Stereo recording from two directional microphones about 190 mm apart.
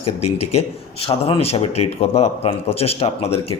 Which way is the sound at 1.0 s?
30° left (ahead or behind).